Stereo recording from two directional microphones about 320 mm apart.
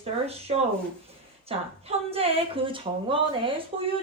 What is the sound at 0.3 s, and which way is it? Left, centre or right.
A woman's voice, centre.